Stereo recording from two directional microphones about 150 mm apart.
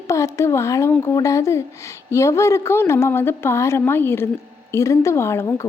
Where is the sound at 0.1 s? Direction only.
20° left (ahead or behind).